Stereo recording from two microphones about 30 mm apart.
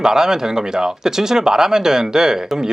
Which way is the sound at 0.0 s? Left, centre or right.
Centre.